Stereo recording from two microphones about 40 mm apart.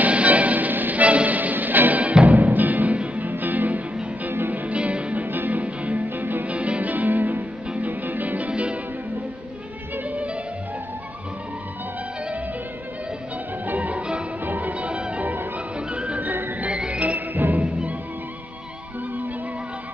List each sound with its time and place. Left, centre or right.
0.0 s music: right
1.0 s music: right
4.5 s music: right
5.1 s music: right
5.6 s music: right
6.0 s music: right
6.4 s music: right
8.5 s music: right
10.0 s music: right
13.7 s music: right
14.4 s music: right
14.7 s music: right
17.3 s music: right
17.6 s music: right